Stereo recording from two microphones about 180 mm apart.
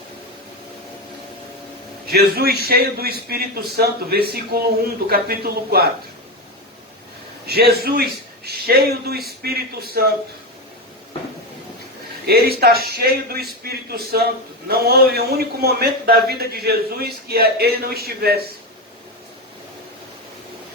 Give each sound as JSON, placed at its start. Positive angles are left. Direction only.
{"t": 2.0, "sound": "a man's voice", "side_deg": -60}
{"t": 7.4, "sound": "a man's voice", "side_deg": -60}
{"t": 12.2, "sound": "a man's voice", "side_deg": -60}